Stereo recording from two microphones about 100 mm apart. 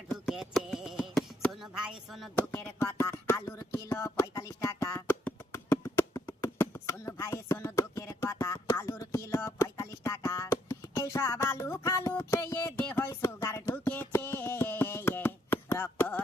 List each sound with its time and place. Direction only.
0.1 s a sound: 5° right (ahead or behind)
2.0 s speech: centre (ahead or behind)
2.5 s speech: 25° left (ahead or behind)
3.8 s music: 30° left (ahead or behind)
6.4 s chopping: 30° left (ahead or behind)
13.0 s music: 30° left (ahead or behind)